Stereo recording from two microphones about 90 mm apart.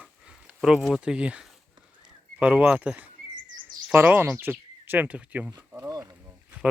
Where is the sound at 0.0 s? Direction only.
10° right (ahead or behind).